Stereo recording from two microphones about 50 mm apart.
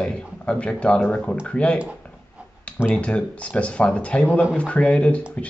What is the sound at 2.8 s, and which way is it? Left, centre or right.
Speech, left.